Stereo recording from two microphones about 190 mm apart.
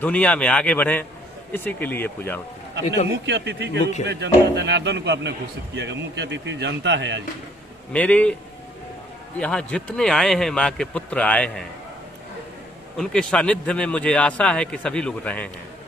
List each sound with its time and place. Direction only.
0.0 s speech: 5° left (ahead or behind)
3.2 s a man's voice: 65° right (ahead or behind)
7.9 s speech: 5° left (ahead or behind)
9.4 s a man's voice: 5° left (ahead or behind)
13.0 s a man's voice: 5° left (ahead or behind)